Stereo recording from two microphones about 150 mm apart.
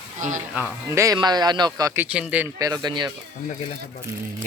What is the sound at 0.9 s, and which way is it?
Speech, 20° right (ahead or behind).